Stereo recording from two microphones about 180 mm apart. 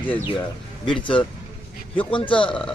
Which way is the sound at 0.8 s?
25° left (ahead or behind).